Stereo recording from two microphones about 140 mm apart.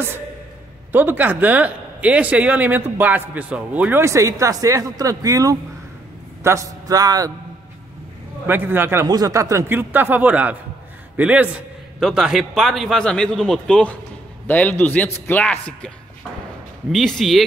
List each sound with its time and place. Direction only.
0.9 s a man's voice: 15° right (ahead or behind)
8.5 s speech: 15° right (ahead or behind)
9.0 s a man's voice: 30° right (ahead or behind); by 15.9 s 10° left (ahead or behind)
16.9 s a man's voice: 5° left (ahead or behind)